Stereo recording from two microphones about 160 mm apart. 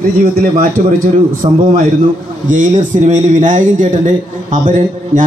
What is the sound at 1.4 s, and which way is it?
Speech, 40° right (ahead or behind).